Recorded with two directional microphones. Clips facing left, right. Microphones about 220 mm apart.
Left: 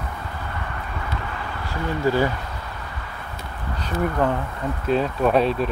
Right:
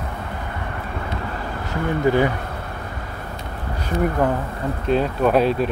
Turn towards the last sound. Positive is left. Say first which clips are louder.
# right 2 dB
turn(degrees=0)  # may be behind; listen again after turning